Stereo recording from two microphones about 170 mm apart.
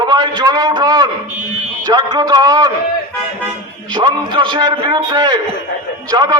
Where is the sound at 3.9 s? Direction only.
25° right (ahead or behind).